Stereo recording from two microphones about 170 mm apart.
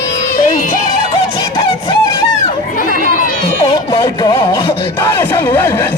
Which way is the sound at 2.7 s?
55° left (ahead or behind).